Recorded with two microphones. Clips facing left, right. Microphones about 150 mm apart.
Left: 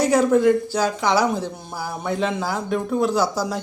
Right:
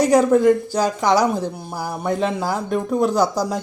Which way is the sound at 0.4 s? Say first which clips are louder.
Right 2 dB; 40° right (ahead or behind).